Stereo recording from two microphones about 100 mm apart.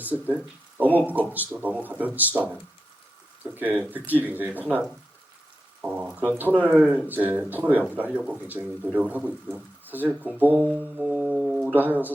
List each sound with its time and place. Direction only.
0.0 s speech: 20° right (ahead or behind)
10.9 s a sound: 15° right (ahead or behind)
11.7 s speech: 20° right (ahead or behind)